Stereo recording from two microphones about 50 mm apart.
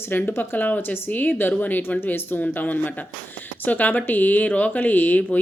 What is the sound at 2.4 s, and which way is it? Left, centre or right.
Speech, left.